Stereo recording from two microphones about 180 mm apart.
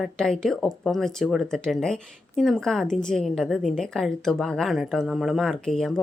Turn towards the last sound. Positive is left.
turn(degrees=5)  # may be behind; listen again after turning